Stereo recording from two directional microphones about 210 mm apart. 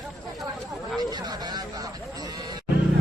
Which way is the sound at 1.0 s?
20° right (ahead or behind).